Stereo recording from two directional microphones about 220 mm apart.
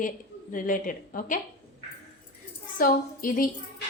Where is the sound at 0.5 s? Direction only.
35° left (ahead or behind).